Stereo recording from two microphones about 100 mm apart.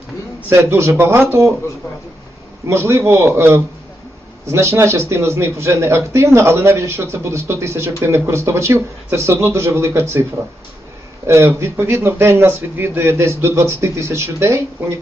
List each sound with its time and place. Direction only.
0.5 s speech: 25° right (ahead or behind)
2.6 s speech: 25° right (ahead or behind)
11.3 s speech: 30° right (ahead or behind)